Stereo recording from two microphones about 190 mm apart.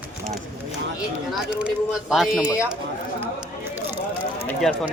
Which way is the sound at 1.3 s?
5° right (ahead or behind).